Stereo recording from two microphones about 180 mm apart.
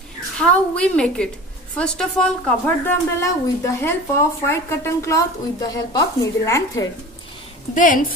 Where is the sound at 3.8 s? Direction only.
15° left (ahead or behind).